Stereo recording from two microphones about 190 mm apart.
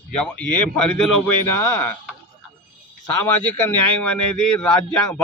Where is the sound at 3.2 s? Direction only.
10° left (ahead or behind).